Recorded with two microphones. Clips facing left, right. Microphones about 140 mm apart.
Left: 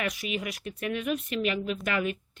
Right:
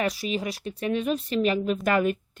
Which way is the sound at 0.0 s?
35° right (ahead or behind).